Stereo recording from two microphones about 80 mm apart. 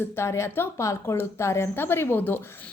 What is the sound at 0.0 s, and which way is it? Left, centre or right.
A woman's voice, left.